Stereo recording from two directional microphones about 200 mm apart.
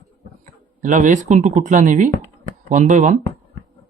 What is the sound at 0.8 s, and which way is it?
Speech, 40° right (ahead or behind).